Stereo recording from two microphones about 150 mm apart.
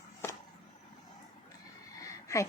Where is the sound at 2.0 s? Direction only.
20° left (ahead or behind).